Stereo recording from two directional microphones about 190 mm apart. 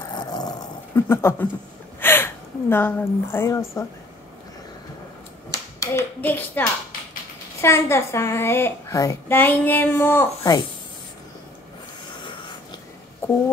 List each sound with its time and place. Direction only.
0.1 s dog: 20° left (ahead or behind)
2.0 s a woman's voice: 10° left (ahead or behind)
5.5 s clapping: 15° left (ahead or behind)
7.6 s a child's voice: 15° left (ahead or behind)